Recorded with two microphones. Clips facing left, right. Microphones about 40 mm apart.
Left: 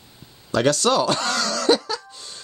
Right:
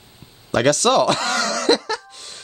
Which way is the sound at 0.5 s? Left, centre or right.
Right.